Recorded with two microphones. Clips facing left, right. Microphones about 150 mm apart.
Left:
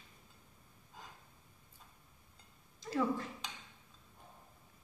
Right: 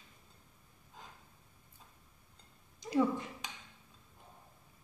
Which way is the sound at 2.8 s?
20° right (ahead or behind).